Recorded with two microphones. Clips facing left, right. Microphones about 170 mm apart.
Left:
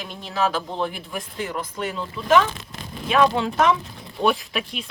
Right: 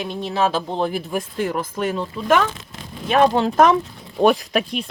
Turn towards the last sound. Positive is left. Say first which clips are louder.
# right 7 dB
turn(degrees=-40)  # may be behind; listen again after turning